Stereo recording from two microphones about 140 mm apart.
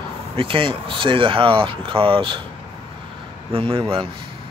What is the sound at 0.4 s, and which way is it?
Speech, 40° right (ahead or behind).